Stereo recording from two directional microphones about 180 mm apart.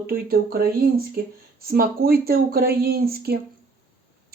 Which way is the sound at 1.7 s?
55° right (ahead or behind).